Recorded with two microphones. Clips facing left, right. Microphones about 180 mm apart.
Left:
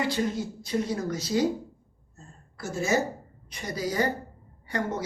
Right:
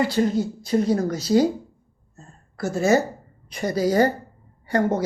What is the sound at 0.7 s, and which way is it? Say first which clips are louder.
Speech: right 7 dB; 40° right (ahead or behind).